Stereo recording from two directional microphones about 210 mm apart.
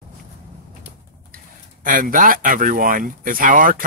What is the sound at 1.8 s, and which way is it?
Speech, 40° right (ahead or behind).